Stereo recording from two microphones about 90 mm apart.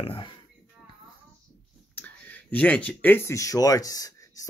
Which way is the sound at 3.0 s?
25° left (ahead or behind).